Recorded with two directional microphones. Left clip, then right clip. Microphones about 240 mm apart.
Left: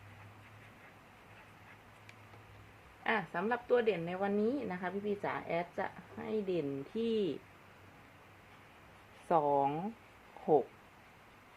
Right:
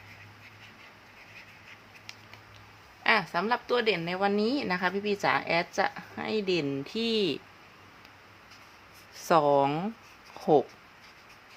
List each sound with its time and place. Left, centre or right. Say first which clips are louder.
3.0 s a woman's voice: right 9 dB; right
9.2 s speech: right 7 dB; right